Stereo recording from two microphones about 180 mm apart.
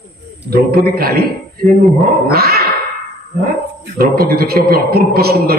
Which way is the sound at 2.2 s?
60° right (ahead or behind).